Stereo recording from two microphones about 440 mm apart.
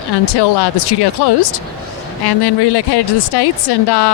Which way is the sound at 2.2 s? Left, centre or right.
Left.